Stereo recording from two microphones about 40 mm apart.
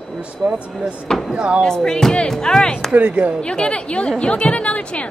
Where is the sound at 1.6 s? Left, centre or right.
Centre.